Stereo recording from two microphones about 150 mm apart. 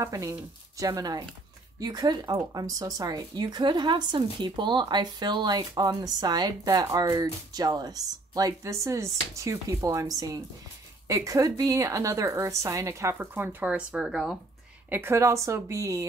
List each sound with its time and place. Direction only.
0.0 s speech: 20° right (ahead or behind); by 14.4 s 5° right (ahead or behind)
14.9 s speech: 15° right (ahead or behind)